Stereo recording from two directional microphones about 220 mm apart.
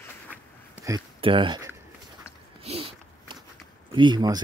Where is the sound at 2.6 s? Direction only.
25° right (ahead or behind).